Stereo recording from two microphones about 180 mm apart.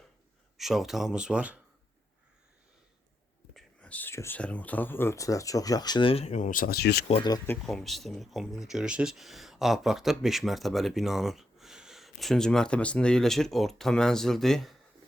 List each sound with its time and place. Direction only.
0.5 s speech: centre (ahead or behind)
3.5 s speech: 5° left (ahead or behind); by 7.0 s 60° left (ahead or behind)
7.1 s speech: 25° left (ahead or behind)
7.5 s speech: centre (ahead or behind)